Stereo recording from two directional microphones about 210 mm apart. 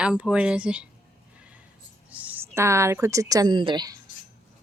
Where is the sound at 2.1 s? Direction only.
5° right (ahead or behind).